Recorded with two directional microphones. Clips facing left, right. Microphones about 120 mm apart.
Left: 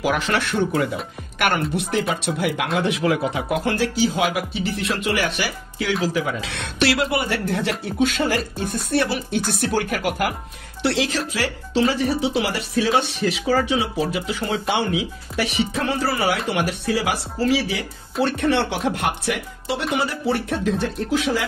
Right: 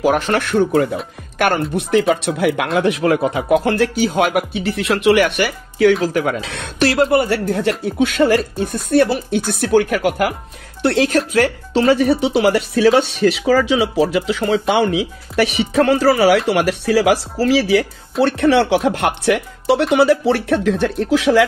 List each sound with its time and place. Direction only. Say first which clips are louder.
0.0 s speech: right 6 dB; 45° right (ahead or behind); by 6.5 s 60° right (ahead or behind)
6.5 s speech: right 2 dB; 45° right (ahead or behind)
8.0 s speech: right 6 dB; 55° right (ahead or behind); by 14.9 s 85° right
15.3 s speech: right 8 dB; 70° right (ahead or behind)
18.2 s speech: right 6 dB; 75° right (ahead or behind)
19.6 s speech: right 10 dB; 70° right (ahead or behind); by 21.5 s 90° right